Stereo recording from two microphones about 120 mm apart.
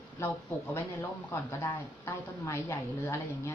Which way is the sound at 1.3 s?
20° left (ahead or behind).